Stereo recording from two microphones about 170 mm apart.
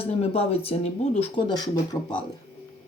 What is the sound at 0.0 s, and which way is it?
Speech, 35° left (ahead or behind).